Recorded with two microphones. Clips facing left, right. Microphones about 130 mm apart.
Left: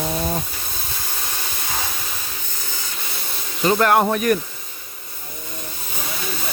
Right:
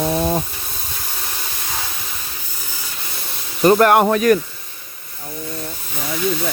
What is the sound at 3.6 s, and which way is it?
Speech, 50° right (ahead or behind).